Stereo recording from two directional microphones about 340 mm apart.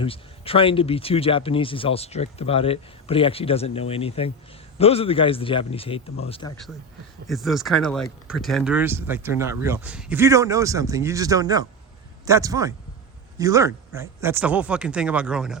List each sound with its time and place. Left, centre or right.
0.0 s speech: centre
7.3 s speech: centre